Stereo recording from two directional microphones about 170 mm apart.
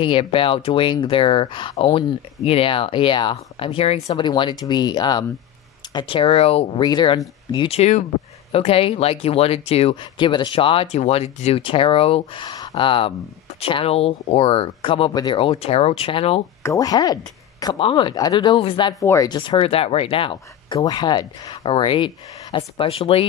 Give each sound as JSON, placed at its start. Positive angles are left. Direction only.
{"t": 0.0, "sound": "speech", "side_deg": 30}
{"t": 4.3, "sound": "speech", "side_deg": 25}
{"t": 16.6, "sound": "speech", "side_deg": 20}